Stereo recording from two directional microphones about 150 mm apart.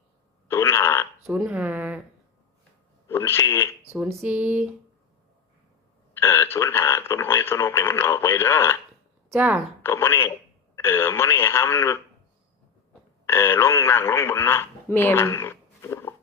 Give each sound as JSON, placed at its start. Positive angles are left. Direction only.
{"t": 0.4, "sound": "a sound", "side_deg": 20}
{"t": 1.3, "sound": "speech", "side_deg": -10}
{"t": 3.1, "sound": "speech", "side_deg": 15}
{"t": 4.2, "sound": "speech", "side_deg": -10}
{"t": 6.1, "sound": "speech", "side_deg": 15}
{"t": 9.3, "sound": "speech", "side_deg": -10}
{"t": 9.8, "sound": "speech", "side_deg": 15}
{"t": 13.2, "sound": "speech", "side_deg": 15}